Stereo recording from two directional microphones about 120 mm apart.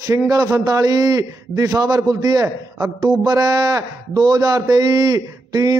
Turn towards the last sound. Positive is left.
turn(degrees=-35)  # may be behind; listen again after turning